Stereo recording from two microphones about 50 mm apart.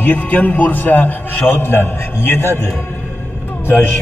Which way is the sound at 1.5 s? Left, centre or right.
Left.